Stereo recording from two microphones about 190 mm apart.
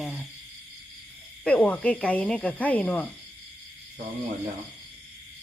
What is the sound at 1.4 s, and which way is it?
Speech, 5° left (ahead or behind).